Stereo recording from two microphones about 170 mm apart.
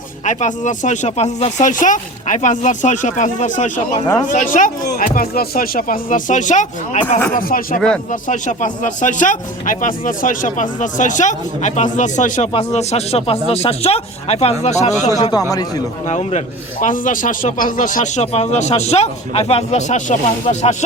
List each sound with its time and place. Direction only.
0.3 s speech: 45° left (ahead or behind)
15.0 s speech: 25° left (ahead or behind)
16.0 s speech: 45° left (ahead or behind)